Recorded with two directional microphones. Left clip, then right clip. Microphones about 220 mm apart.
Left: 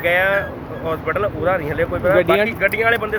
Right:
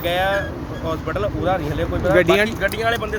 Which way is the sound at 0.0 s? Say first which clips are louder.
Left 3 dB; 5° left (ahead or behind).